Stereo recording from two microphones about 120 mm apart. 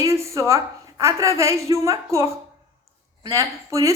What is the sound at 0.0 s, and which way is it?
A woman's voice, 25° right (ahead or behind).